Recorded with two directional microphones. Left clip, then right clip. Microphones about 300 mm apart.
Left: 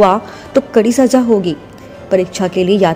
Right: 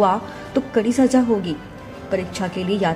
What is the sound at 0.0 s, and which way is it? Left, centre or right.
A woman's voice, left.